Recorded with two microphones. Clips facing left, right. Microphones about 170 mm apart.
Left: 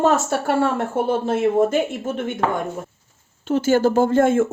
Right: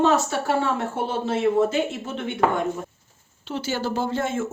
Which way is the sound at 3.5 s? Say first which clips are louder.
Left 10 dB; 50° left (ahead or behind).